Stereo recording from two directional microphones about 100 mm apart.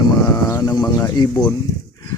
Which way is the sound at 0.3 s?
40° left (ahead or behind).